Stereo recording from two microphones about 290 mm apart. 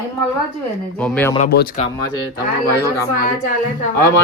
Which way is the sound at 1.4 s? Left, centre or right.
Left.